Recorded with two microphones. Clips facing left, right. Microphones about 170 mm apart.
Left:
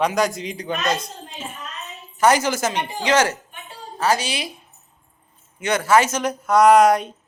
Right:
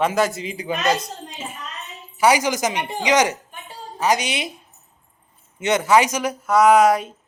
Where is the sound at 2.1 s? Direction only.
10° right (ahead or behind).